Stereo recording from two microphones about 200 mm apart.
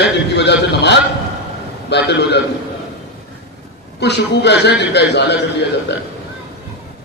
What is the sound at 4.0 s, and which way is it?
A man's voice, 60° left (ahead or behind).